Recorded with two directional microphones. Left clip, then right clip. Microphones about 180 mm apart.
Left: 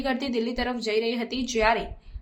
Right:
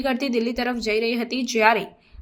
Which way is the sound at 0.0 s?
20° right (ahead or behind).